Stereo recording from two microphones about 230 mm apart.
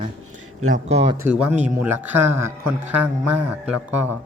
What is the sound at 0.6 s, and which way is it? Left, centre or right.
Speech, right.